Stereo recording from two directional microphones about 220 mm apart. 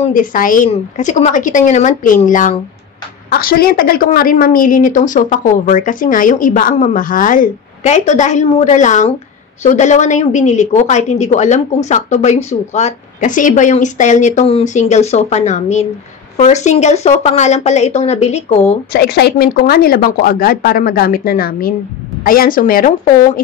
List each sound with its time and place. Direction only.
0.0 s a woman's voice: 35° left (ahead or behind)
18.9 s a woman's voice: 45° left (ahead or behind)